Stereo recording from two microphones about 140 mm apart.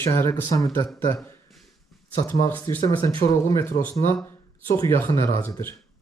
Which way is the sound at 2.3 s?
15° left (ahead or behind).